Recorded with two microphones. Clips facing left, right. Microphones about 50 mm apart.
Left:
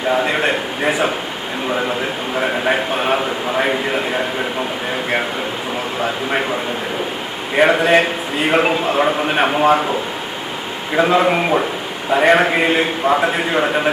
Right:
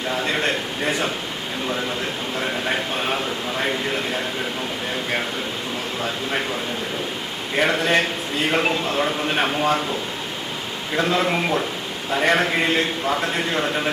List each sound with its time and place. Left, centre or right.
0.1 s a man's voice: centre
2.4 s a man's voice: left
7.5 s a man's voice: centre
10.9 s a man's voice: centre